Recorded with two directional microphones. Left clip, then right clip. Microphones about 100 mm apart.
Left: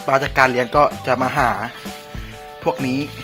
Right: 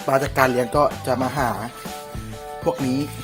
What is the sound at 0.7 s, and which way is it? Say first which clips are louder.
Speech: left 3 dB; 15° right (ahead or behind).